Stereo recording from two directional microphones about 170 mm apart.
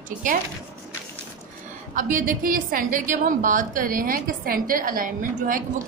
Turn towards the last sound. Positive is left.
turn(degrees=-55)  # may be behind; listen again after turning